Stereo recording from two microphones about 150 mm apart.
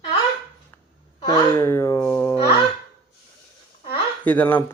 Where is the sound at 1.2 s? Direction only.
15° left (ahead or behind).